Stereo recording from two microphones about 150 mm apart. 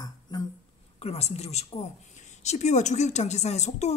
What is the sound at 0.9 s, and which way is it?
Speech, 45° left (ahead or behind).